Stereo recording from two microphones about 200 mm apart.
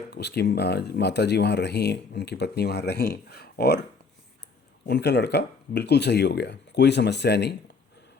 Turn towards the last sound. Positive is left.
turn(degrees=55)  # may be behind; listen again after turning